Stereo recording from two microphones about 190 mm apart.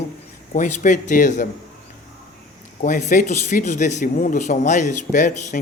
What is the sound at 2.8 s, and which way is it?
Speech, 40° left (ahead or behind).